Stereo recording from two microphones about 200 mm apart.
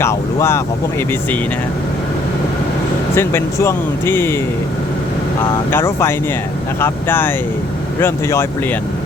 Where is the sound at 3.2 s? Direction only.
15° left (ahead or behind).